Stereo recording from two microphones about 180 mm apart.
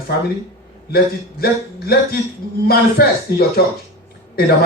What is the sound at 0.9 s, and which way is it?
A man's voice, 60° left (ahead or behind).